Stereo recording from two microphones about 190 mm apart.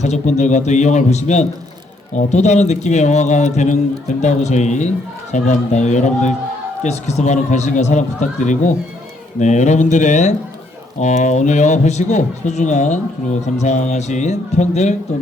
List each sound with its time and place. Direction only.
0.0 s a man's voice: 35° left (ahead or behind)